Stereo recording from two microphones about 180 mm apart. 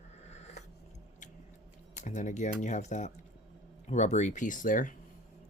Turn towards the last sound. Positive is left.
turn(degrees=50)  # may be behind; listen again after turning